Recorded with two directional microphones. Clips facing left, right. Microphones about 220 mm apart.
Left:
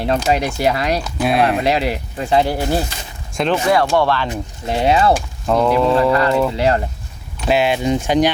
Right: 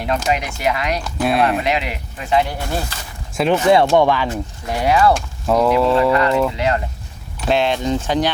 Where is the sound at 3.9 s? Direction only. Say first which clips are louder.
Right 2 dB; 15° right (ahead or behind).